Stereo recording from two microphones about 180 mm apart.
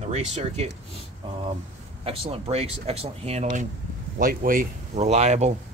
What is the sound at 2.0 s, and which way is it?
Speech, 30° right (ahead or behind).